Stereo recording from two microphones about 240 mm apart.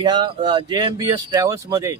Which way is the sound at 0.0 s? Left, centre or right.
Centre.